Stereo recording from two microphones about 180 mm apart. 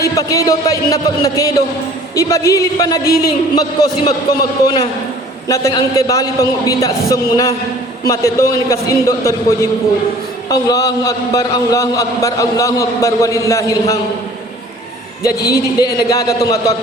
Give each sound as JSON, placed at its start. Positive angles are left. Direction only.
{"t": 0.0, "sound": "a man's voice", "side_deg": 20}
{"t": 4.6, "sound": "a man's voice", "side_deg": 20}
{"t": 15.2, "sound": "a man's voice", "side_deg": 20}